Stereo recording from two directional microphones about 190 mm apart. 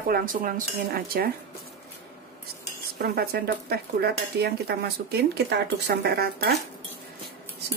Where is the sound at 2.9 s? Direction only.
55° right (ahead or behind).